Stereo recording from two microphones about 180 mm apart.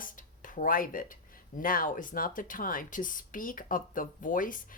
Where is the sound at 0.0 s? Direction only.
45° left (ahead or behind).